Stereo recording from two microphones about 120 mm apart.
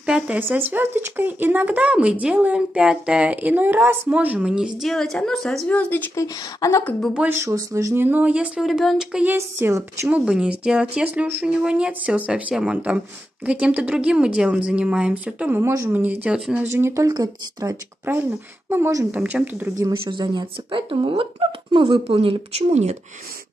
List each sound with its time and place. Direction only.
0.0 s speech: 10° right (ahead or behind)
5.8 s speech: 15° left (ahead or behind)
6.2 s speech: 30° left (ahead or behind)
7.2 s speech: 20° right (ahead or behind)
10.0 s speech: 10° right (ahead or behind)
16.6 s speech: 25° right (ahead or behind)
18.1 s speech: 20° right (ahead or behind)
20.1 s speech: 40° right (ahead or behind); by 22.9 s 60° right (ahead or behind)